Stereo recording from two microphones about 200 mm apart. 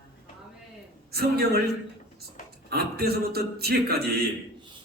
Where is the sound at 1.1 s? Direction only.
50° right (ahead or behind).